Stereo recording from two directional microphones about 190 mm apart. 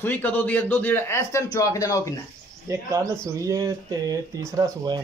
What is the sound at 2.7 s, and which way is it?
Speech, 15° right (ahead or behind).